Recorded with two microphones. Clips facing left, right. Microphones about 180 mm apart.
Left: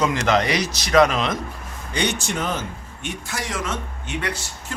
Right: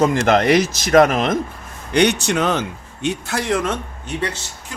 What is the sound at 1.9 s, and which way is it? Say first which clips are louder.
A man's voice: right 8 dB; 65° right (ahead or behind).